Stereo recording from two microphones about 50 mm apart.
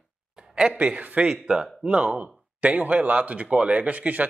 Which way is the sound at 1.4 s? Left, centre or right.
Centre.